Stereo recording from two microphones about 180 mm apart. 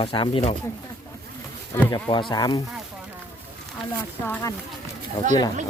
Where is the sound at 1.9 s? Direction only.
25° left (ahead or behind).